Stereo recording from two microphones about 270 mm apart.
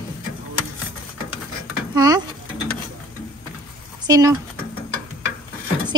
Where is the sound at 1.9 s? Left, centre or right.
Centre.